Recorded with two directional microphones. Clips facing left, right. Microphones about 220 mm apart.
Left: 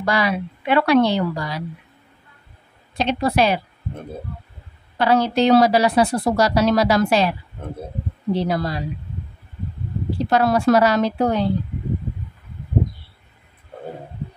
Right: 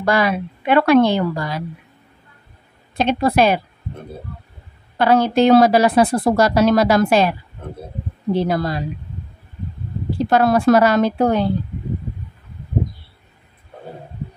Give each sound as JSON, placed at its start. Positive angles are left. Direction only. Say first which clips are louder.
{"t": 0.0, "sound": "a woman's voice", "louder": "right 3 dB", "side_deg": -50}
{"t": 3.0, "sound": "a woman's voice", "louder": "right 3 dB", "side_deg": -50}
{"t": 4.9, "sound": "a woman's voice", "louder": "right 3 dB", "side_deg": -50}
{"t": 10.3, "sound": "a woman's voice", "louder": "right 2 dB", "side_deg": -50}